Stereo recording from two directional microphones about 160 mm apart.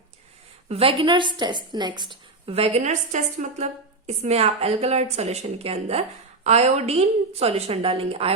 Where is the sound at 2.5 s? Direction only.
40° right (ahead or behind).